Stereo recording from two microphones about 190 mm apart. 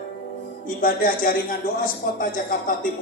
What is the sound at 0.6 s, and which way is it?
Speech, 50° left (ahead or behind).